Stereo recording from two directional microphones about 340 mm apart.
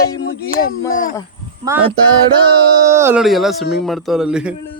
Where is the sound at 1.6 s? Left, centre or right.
Centre.